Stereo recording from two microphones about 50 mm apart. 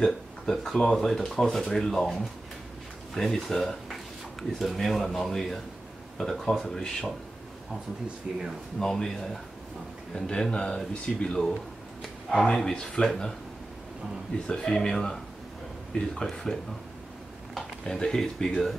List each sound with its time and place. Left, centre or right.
0.0 s speech: centre
3.2 s speech: centre
8.3 s speech: centre
8.7 s speech: centre
12.0 s a sound: centre
12.5 s speech: centre
14.5 s speech: centre
16.2 s speech: centre
17.8 s speech: centre